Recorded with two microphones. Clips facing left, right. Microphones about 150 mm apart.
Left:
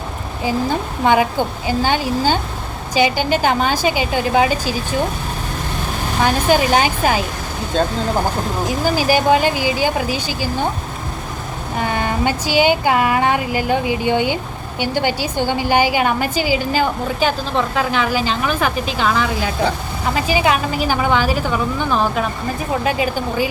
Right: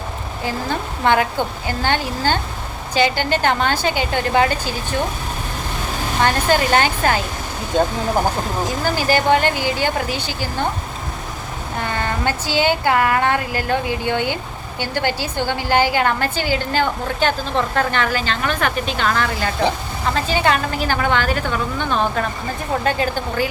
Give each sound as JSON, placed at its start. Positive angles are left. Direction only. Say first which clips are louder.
{"t": 0.4, "sound": "a woman's voice", "louder": "left 5 dB", "side_deg": 15}
{"t": 6.2, "sound": "a woman's voice", "louder": "left 2 dB", "side_deg": 15}
{"t": 7.7, "sound": "speech", "louder": "right 1 dB", "side_deg": -15}
{"t": 8.8, "sound": "a woman's voice", "louder": "left 3 dB", "side_deg": 10}
{"t": 11.8, "sound": "a woman's voice", "louder": "left 3 dB", "side_deg": 15}